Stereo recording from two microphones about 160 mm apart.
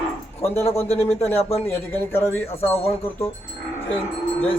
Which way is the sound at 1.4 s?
40° left (ahead or behind).